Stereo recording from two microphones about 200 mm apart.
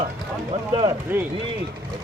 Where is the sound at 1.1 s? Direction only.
10° right (ahead or behind).